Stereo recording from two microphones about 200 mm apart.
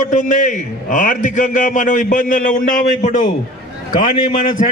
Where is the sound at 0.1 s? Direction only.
40° left (ahead or behind).